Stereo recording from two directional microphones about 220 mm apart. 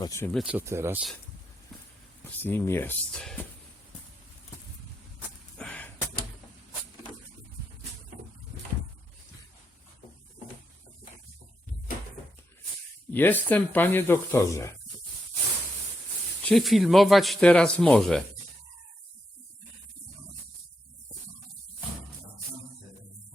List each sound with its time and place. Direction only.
0.0 s speech: 10° left (ahead or behind)
0.3 s speech: 5° right (ahead or behind)
1.7 s a sound: centre (ahead or behind)
2.4 s speech: 10° left (ahead or behind)
5.5 s a sound: 5° left (ahead or behind)
13.1 s speech: 10° left (ahead or behind)
16.4 s speech: centre (ahead or behind)